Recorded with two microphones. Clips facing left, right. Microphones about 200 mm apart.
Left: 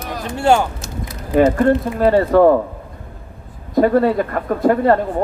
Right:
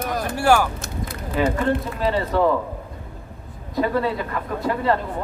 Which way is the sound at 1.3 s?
50° left (ahead or behind).